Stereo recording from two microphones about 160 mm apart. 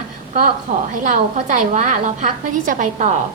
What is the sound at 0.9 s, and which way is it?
A woman's voice, 55° right (ahead or behind).